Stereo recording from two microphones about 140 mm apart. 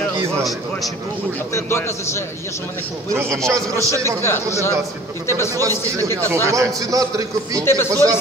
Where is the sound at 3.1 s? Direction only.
20° right (ahead or behind).